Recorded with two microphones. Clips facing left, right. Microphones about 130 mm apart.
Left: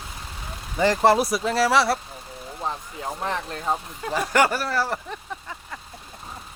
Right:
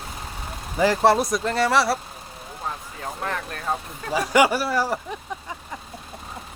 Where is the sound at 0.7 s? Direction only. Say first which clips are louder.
Even; 5° right (ahead or behind).